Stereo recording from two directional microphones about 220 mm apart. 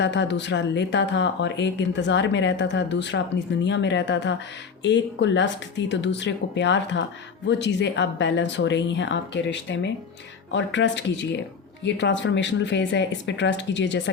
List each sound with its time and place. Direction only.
0.0 s speech: 55° left (ahead or behind)